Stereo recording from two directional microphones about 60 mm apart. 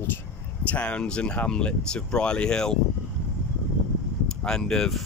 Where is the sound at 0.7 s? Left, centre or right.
Left.